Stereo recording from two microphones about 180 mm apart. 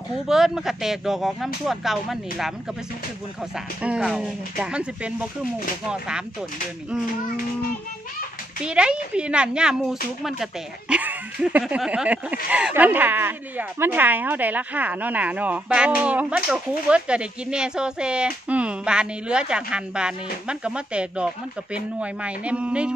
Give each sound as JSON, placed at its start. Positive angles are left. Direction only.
{"t": 0.3, "sound": "speech", "side_deg": 0}
{"t": 3.5, "sound": "speech", "side_deg": -5}
{"t": 8.6, "sound": "speech", "side_deg": -5}